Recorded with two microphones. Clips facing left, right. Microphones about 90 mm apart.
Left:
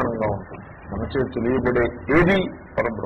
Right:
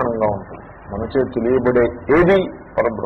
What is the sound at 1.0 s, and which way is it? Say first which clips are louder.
A man's voice: right 5 dB; 20° right (ahead or behind).